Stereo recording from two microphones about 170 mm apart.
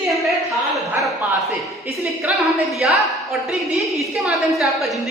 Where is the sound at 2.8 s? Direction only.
5° right (ahead or behind).